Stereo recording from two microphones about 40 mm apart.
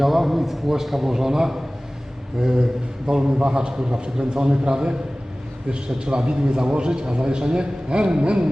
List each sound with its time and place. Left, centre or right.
0.0 s a man's voice: centre; by 8.4 s right